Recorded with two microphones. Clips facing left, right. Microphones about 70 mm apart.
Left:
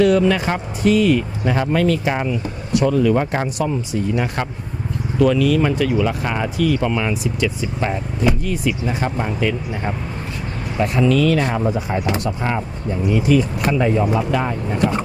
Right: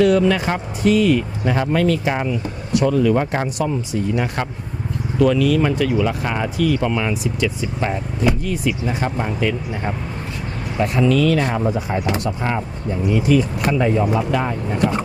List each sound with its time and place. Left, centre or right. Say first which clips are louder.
0.0 s speech: even; centre